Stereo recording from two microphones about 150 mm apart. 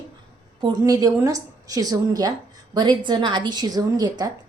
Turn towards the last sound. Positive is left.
turn(degrees=-25)  # may be behind; listen again after turning